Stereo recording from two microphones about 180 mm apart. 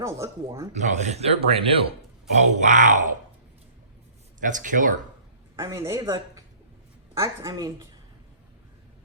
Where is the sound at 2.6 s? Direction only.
45° right (ahead or behind).